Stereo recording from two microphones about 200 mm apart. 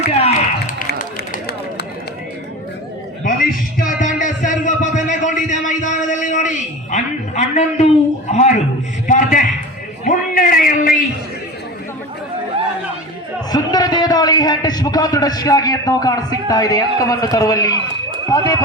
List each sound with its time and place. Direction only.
0.1 s speech: 30° left (ahead or behind)
3.2 s music: 45° left (ahead or behind)
9.0 s a sound: 40° left (ahead or behind)
13.5 s a man's voice: 20° left (ahead or behind)